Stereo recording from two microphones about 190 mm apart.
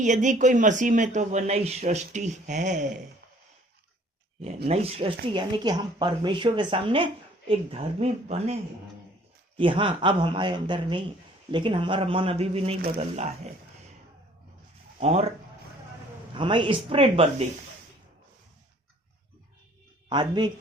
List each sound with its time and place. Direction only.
0.0 s speech: 40° right (ahead or behind)
4.4 s a woman's voice: 35° right (ahead or behind)
9.6 s a woman's voice: 25° right (ahead or behind)
14.9 s speech: 35° right (ahead or behind)
16.3 s a woman's voice: 25° right (ahead or behind)
20.1 s a man's voice: 25° right (ahead or behind)